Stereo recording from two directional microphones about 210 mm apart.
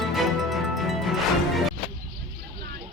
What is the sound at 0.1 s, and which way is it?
Music, centre (ahead or behind).